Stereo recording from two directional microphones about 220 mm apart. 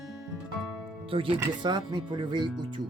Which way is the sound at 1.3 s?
20° right (ahead or behind).